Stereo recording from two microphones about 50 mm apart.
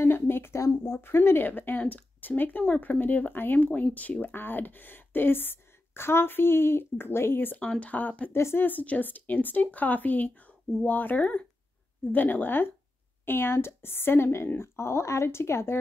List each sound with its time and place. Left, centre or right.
0.0 s a sound: left
0.8 s a woman's voice: left
1.8 s speech: left
2.2 s speech: left
4.3 s a woman's voice: left
7.8 s speech: left
8.3 s speech: left
8.6 s a woman's voice: left